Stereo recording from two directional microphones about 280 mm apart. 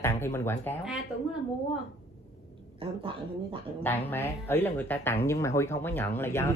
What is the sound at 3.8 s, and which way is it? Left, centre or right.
Speech, centre.